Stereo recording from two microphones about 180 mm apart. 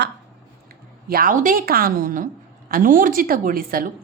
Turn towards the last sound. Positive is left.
turn(degrees=-50)  # may be behind; listen again after turning